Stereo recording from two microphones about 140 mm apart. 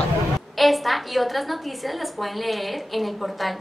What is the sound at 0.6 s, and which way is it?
Speech, centre (ahead or behind).